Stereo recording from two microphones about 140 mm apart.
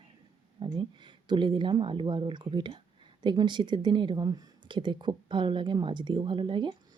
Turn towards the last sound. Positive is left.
turn(degrees=-35)  # may be behind; listen again after turning